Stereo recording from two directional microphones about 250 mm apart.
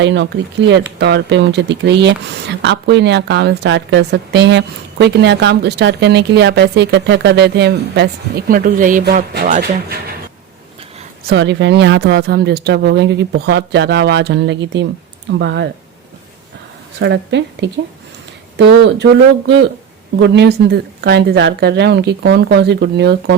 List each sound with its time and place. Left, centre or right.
0.0 s speech: right
11.3 s speech: right
17.0 s speech: right